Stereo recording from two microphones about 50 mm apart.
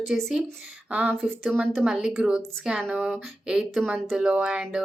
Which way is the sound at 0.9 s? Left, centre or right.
Right.